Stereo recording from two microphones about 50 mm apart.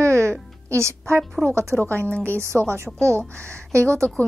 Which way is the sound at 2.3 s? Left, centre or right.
Right.